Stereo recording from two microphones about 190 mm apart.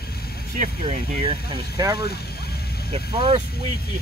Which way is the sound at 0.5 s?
40° right (ahead or behind).